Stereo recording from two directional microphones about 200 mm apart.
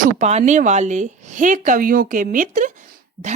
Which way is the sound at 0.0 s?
35° right (ahead or behind).